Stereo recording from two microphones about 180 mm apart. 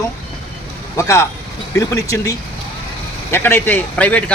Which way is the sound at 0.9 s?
15° left (ahead or behind).